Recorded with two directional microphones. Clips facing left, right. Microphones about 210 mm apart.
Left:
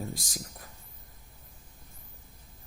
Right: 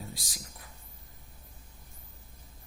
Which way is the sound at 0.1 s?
45° left (ahead or behind).